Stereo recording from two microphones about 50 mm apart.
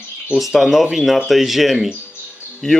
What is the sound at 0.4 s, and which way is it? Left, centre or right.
Speech, centre.